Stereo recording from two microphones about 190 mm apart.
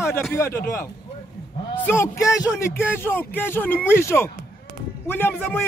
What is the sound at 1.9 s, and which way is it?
A man's voice, 15° left (ahead or behind).